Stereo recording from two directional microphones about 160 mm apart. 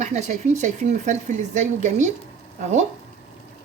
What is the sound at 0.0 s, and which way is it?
Speech, 45° right (ahead or behind).